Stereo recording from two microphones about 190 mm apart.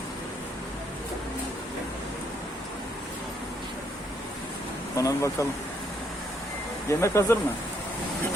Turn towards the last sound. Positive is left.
turn(degrees=15)  # may be behind; listen again after turning